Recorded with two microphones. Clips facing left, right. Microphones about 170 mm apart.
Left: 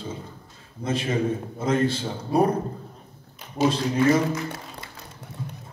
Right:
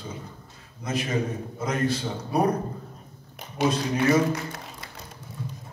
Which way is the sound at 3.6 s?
65° right (ahead or behind).